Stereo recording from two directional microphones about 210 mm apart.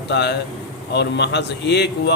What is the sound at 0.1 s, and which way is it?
A man's voice, 55° left (ahead or behind).